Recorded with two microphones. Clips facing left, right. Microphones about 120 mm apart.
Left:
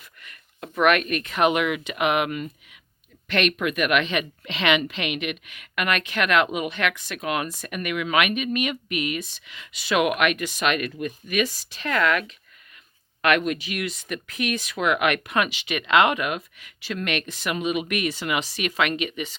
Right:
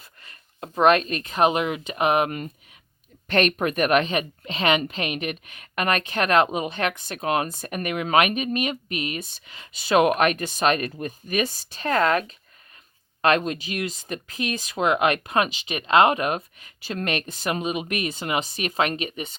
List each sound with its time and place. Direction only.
0.2 s speech: 35° right (ahead or behind)
13.2 s speech: 30° right (ahead or behind)